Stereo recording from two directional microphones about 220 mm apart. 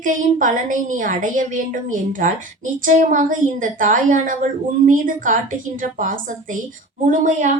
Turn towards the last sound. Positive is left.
turn(degrees=-35)  # may be behind; listen again after turning